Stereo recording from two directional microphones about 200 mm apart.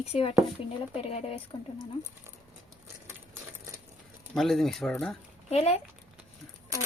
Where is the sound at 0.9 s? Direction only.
30° left (ahead or behind).